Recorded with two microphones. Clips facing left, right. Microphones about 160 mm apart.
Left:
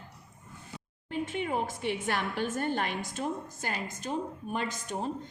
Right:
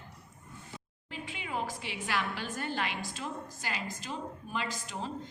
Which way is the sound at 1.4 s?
55° left (ahead or behind).